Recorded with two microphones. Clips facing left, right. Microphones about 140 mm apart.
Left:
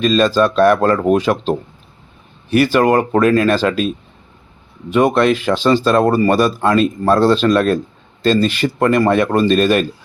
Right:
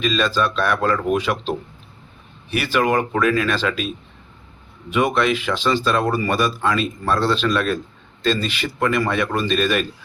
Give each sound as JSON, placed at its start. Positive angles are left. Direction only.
{"t": 0.0, "sound": "speech", "side_deg": 40}
{"t": 4.9, "sound": "speech", "side_deg": 35}